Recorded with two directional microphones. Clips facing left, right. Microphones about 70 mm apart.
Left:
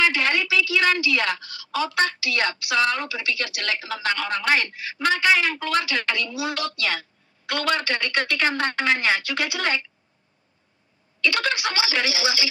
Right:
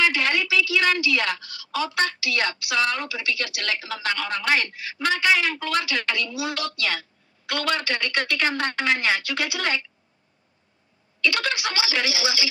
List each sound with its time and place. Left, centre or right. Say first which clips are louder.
0.0 s a woman's voice: left 1 dB; left
11.1 s a woman's voice: left 1 dB; left